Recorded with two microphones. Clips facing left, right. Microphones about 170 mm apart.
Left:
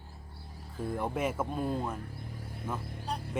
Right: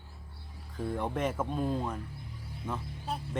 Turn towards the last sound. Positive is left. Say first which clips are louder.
# even
turn(degrees=10)  # may be behind; listen again after turning